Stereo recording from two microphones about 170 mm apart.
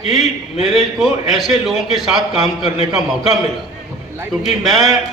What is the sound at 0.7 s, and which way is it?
A man's voice, centre (ahead or behind).